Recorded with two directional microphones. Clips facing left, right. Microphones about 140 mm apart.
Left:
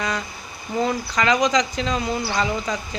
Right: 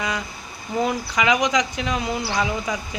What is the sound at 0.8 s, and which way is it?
Speech, 10° right (ahead or behind).